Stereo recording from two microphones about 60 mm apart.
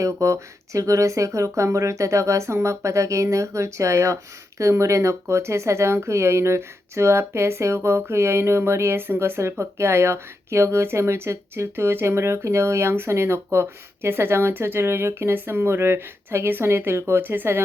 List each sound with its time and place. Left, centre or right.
0.0 s speech: right